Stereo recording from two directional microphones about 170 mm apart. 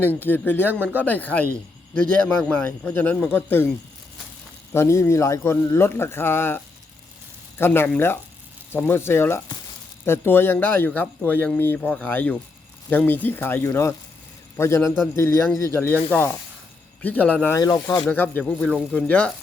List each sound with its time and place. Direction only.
0.0 s speech: 10° left (ahead or behind)
4.7 s speech: 15° left (ahead or behind)
7.6 s speech: 15° left (ahead or behind)
17.6 s speech: 20° left (ahead or behind)